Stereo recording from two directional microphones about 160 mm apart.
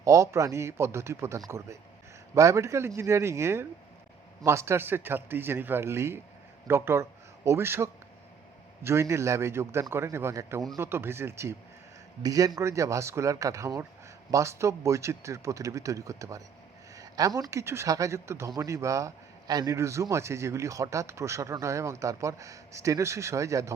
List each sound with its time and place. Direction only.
0.0 s a man's voice: 20° right (ahead or behind)